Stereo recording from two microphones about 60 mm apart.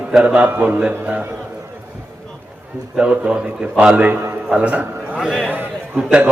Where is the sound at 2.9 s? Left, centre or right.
Centre.